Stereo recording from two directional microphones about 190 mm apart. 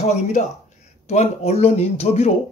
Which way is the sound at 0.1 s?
40° left (ahead or behind).